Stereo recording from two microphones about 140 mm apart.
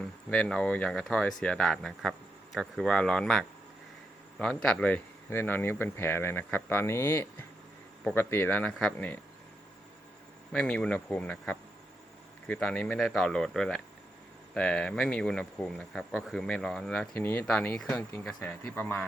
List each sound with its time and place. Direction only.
0.3 s speech: 5° left (ahead or behind)
10.5 s speech: 5° left (ahead or behind)